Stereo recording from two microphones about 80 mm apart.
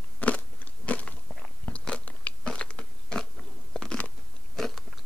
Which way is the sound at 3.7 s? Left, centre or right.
Centre.